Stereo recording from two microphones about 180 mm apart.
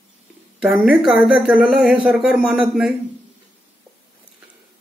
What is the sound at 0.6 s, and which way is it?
Speech, 5° right (ahead or behind).